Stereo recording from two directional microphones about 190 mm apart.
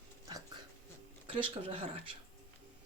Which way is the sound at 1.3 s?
30° right (ahead or behind).